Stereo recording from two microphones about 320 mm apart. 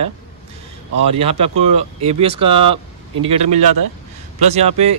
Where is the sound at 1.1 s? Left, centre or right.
Centre.